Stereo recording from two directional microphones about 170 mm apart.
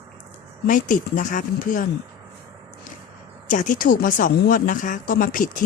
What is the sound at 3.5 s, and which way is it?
Speech, 50° left (ahead or behind).